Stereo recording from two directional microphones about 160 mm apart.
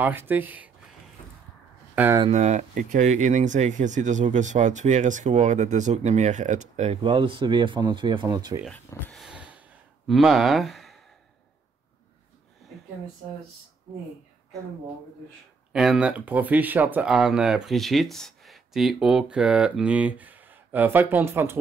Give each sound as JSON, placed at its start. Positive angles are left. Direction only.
{"t": 0.0, "sound": "speech", "side_deg": -10}
{"t": 2.0, "sound": "speech", "side_deg": -10}
{"t": 2.3, "sound": "speech", "side_deg": -45}
{"t": 7.0, "sound": "speech", "side_deg": -30}
{"t": 8.6, "sound": "speech", "side_deg": 5}
{"t": 9.2, "sound": "a sound", "side_deg": -5}
{"t": 15.7, "sound": "speech", "side_deg": -5}